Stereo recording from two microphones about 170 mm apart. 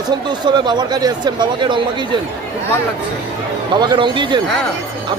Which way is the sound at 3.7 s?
25° right (ahead or behind).